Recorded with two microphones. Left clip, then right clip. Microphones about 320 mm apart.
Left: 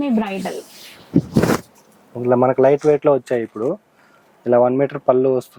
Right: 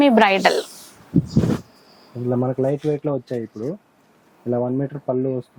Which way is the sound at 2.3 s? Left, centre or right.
Centre.